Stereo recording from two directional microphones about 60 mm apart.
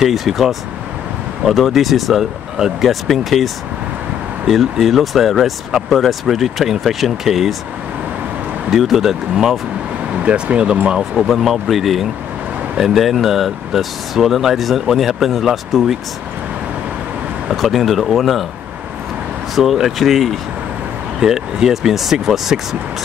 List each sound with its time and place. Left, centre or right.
0.0 s speech: centre
4.5 s speech: centre
8.6 s speech: centre
10.2 s speech: centre
11.2 s speech: centre
17.6 s speech: centre
19.5 s speech: centre